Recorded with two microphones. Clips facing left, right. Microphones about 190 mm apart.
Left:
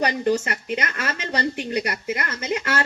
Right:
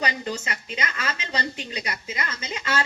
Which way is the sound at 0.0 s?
55° left (ahead or behind).